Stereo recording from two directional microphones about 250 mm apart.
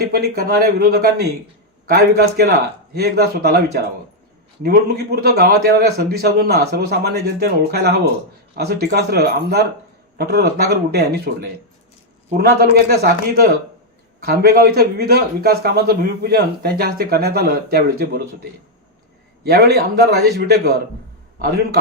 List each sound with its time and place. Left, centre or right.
0.0 s a man's voice: right
19.5 s a man's voice: right